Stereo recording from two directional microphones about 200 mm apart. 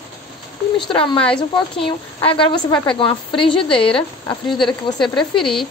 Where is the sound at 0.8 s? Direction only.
25° left (ahead or behind).